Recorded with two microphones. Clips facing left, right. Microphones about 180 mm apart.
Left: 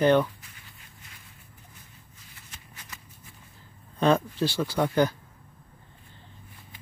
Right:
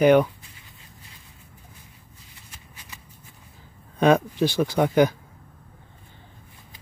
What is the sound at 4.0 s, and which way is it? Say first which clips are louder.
Speech: right 4 dB; 15° right (ahead or behind).